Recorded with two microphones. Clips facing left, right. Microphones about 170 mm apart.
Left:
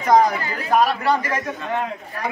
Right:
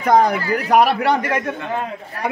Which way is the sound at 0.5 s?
70° right (ahead or behind).